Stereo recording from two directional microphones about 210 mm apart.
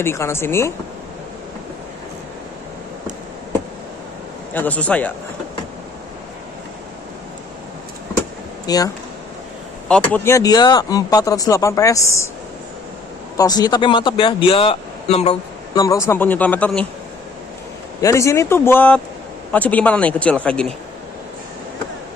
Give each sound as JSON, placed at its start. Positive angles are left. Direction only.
{"t": 0.0, "sound": "speech", "side_deg": 10}
{"t": 4.6, "sound": "speech", "side_deg": 5}
{"t": 8.6, "sound": "speech", "side_deg": 15}
{"t": 9.8, "sound": "speech", "side_deg": 5}
{"t": 13.4, "sound": "speech", "side_deg": 20}
{"t": 15.8, "sound": "speech", "side_deg": 15}
{"t": 18.0, "sound": "speech", "side_deg": 15}